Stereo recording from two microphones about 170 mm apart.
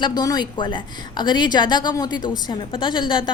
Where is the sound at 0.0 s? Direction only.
25° left (ahead or behind).